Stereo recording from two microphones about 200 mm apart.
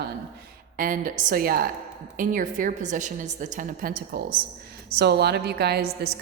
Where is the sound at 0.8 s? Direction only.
45° right (ahead or behind).